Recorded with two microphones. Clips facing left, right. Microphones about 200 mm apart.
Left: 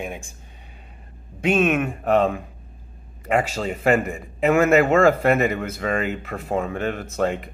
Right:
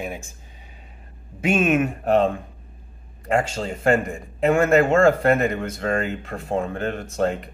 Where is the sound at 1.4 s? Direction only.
5° right (ahead or behind).